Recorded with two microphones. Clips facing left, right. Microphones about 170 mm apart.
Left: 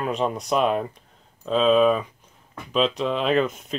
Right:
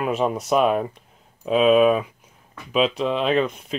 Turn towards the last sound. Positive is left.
turn(degrees=0)  # may be behind; listen again after turning